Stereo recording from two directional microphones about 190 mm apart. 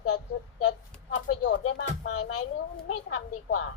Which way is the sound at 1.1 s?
75° left (ahead or behind).